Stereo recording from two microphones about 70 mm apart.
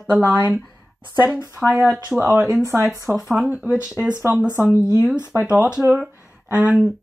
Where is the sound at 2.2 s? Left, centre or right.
Right.